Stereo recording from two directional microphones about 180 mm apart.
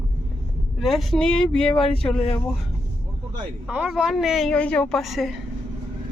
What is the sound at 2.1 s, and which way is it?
Speech, 35° left (ahead or behind).